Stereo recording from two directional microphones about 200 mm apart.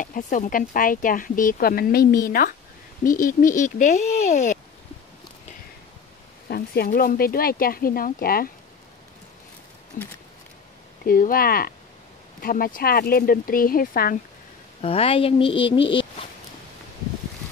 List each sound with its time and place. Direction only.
0.0 s speech: 40° left (ahead or behind)
6.5 s speech: 50° left (ahead or behind)
10.0 s speech: 45° left (ahead or behind)
14.8 s speech: 30° left (ahead or behind)